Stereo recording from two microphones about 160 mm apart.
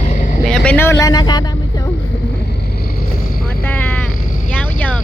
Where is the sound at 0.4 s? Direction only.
5° left (ahead or behind); by 1.9 s 25° left (ahead or behind).